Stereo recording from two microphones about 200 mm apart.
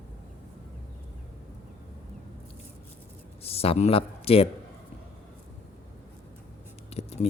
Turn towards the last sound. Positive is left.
turn(degrees=30)  # may be behind; listen again after turning